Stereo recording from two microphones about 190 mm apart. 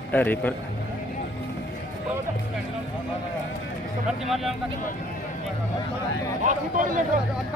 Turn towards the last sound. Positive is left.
turn(degrees=-45)  # may be behind; listen again after turning